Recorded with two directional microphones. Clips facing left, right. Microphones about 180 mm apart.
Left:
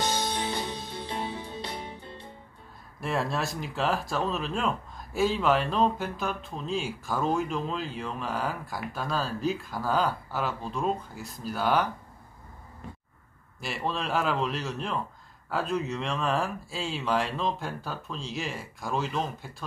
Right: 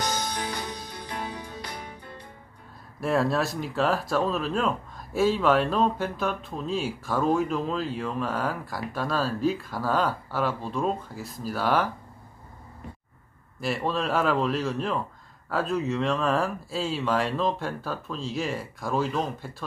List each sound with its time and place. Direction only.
0.0 s music: 25° left (ahead or behind)
3.0 s speech: centre (ahead or behind)
13.6 s speech: centre (ahead or behind)